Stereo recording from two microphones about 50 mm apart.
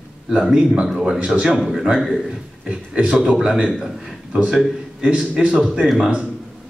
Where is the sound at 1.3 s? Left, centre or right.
Centre.